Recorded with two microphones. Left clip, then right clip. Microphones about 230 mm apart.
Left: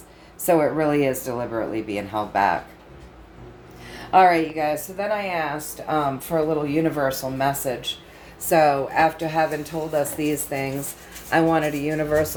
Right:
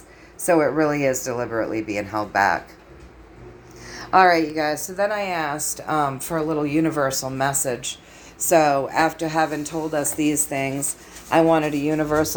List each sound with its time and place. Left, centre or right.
0.4 s a woman's voice: centre
4.1 s speech: right